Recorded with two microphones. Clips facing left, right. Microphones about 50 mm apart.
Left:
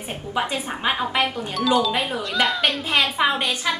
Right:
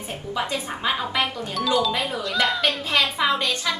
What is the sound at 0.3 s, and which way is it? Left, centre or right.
Speech, left.